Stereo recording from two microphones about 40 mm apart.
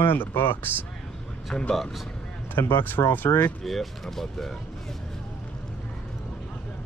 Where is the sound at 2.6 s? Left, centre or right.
Left.